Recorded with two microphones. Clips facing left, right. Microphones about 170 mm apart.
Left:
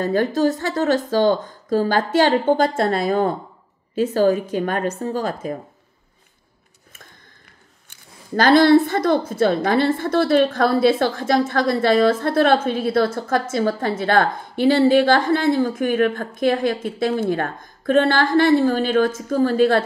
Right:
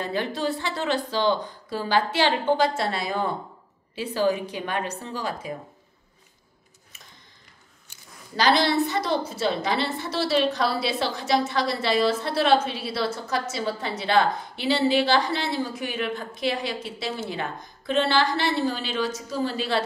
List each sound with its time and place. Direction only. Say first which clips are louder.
0.0 s speech: left 9 dB; 45° left (ahead or behind)
7.9 s speech: left 11 dB; 50° left (ahead or behind)